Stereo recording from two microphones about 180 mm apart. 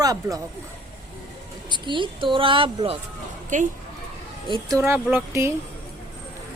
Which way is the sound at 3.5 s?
45° right (ahead or behind).